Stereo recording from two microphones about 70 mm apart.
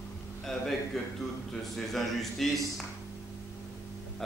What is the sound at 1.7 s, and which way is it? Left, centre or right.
A man's voice, centre.